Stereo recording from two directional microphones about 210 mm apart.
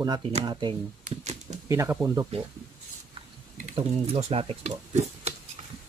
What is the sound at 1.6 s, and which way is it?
Speech, 15° right (ahead or behind).